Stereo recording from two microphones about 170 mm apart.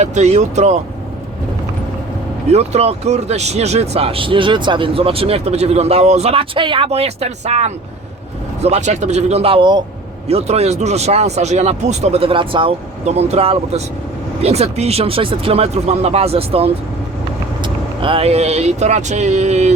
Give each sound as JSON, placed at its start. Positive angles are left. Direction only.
{"t": 0.0, "sound": "speech", "side_deg": -40}
{"t": 2.5, "sound": "speech", "side_deg": -40}